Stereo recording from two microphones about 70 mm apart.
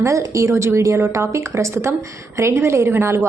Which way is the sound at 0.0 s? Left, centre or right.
Right.